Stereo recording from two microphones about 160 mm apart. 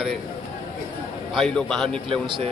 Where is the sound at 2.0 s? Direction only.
30° right (ahead or behind).